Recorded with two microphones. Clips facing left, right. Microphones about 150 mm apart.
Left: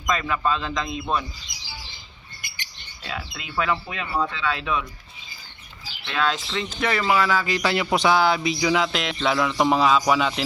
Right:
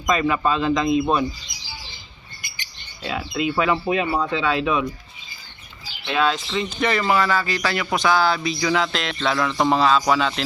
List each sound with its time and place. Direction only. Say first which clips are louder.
0.1 s speech: right 4 dB; 10° right (ahead or behind)
3.0 s speech: right 10 dB; 20° right (ahead or behind)
6.1 s speech: right 4 dB; 10° right (ahead or behind)
6.3 s speech: right 3 dB; centre (ahead or behind)